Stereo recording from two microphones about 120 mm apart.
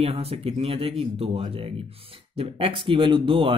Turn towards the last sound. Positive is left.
turn(degrees=-45)  # may be behind; listen again after turning